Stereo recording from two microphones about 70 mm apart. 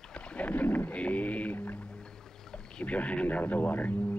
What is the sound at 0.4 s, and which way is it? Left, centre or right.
Boat, centre.